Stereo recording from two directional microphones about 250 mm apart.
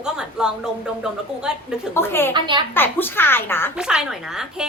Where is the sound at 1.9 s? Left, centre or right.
Centre.